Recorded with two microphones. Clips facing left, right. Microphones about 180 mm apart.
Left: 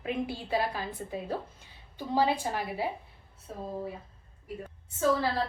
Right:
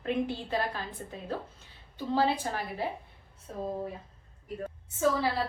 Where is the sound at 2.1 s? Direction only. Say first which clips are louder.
Left 1 dB; 10° left (ahead or behind).